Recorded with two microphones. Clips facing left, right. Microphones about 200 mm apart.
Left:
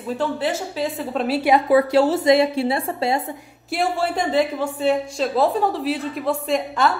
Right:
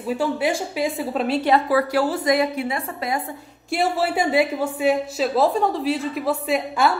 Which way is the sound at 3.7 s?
5° right (ahead or behind).